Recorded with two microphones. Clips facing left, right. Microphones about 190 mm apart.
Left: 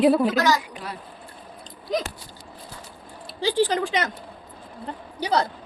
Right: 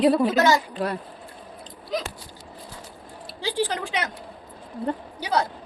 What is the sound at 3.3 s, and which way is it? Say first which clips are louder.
Speech: left 5 dB; 10° right (ahead or behind).